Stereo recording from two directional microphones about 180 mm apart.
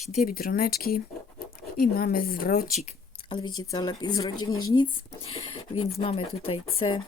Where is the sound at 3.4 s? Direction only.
25° left (ahead or behind).